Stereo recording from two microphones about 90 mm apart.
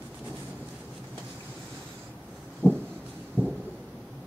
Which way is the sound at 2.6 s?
30° right (ahead or behind).